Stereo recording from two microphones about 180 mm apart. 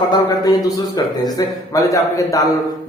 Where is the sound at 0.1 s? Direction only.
20° left (ahead or behind).